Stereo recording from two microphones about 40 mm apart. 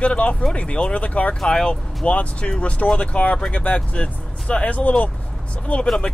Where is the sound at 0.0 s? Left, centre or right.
Left.